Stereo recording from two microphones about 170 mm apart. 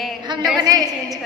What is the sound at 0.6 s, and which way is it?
Speech, 20° right (ahead or behind).